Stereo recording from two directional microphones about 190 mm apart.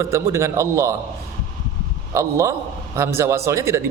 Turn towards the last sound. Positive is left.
turn(degrees=-15)  # may be behind; listen again after turning